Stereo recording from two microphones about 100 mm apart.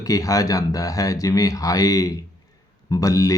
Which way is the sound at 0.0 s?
35° left (ahead or behind).